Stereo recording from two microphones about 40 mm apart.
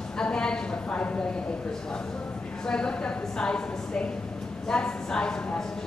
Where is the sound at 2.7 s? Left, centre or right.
Left.